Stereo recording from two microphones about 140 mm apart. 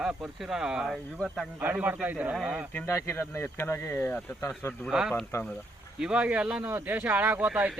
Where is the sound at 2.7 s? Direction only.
15° left (ahead or behind).